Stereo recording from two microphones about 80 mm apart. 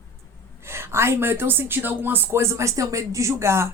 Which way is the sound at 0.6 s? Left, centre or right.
Right.